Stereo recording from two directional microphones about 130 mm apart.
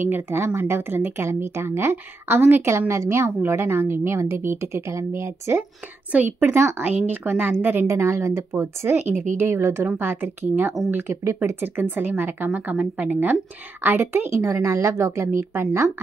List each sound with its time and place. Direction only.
0.0 s speech: 20° right (ahead or behind)
9.1 s speech: 75° right (ahead or behind)
9.4 s speech: 20° right (ahead or behind)